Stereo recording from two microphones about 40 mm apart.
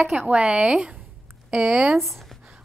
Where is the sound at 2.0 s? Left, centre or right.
Centre.